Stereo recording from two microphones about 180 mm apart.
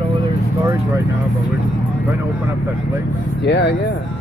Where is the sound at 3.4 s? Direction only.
75° left (ahead or behind).